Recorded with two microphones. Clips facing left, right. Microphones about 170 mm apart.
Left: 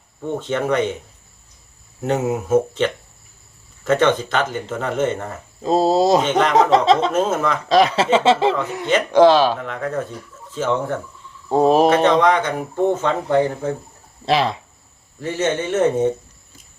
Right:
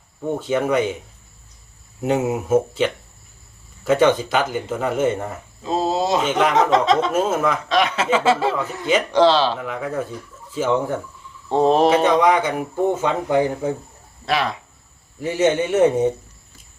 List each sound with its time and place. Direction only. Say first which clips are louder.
0.3 s speech: right 1 dB; 10° right (ahead or behind)
2.0 s speech: even; 10° right (ahead or behind)
5.6 s speech: left 5 dB; 40° left (ahead or behind)
7.1 s speech: even; 5° right (ahead or behind)
7.7 s chuckle: left 7 dB; 35° left (ahead or behind)
9.1 s speech: left 4 dB; 15° left (ahead or behind)
9.6 s speech: left 1 dB; 5° right (ahead or behind)
11.4 s speech: left 1 dB; 10° left (ahead or behind)
11.9 s speech: left 1 dB; 10° right (ahead or behind)
14.3 s chuckle: left 3 dB; 30° left (ahead or behind)
15.2 s speech: right 3 dB; 10° right (ahead or behind)